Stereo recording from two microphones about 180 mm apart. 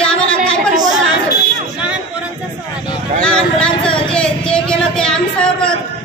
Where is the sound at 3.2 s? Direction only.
5° left (ahead or behind).